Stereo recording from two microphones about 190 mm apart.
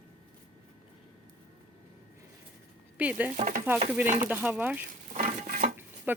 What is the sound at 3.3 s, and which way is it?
Stir, 40° right (ahead or behind).